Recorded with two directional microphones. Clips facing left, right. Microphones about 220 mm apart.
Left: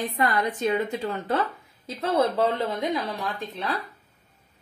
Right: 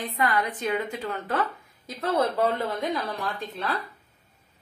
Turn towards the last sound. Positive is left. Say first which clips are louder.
# even
turn(degrees=20)  # may be behind; listen again after turning